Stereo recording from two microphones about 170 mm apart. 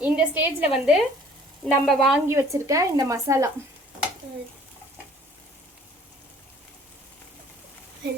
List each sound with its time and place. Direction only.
0.0 s a woman's voice: 10° right (ahead or behind)
2.2 s speech: 15° right (ahead or behind)